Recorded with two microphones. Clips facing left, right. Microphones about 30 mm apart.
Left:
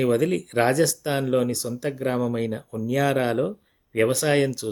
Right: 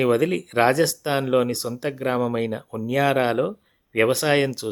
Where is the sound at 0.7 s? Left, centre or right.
Right.